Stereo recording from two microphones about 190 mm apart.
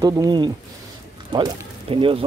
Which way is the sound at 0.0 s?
20° right (ahead or behind).